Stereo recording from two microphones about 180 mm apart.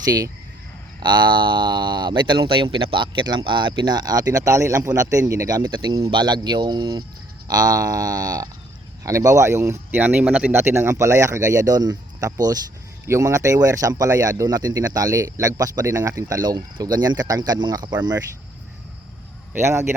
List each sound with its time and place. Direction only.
0.0 s speech: 20° right (ahead or behind)
19.5 s speech: 15° right (ahead or behind)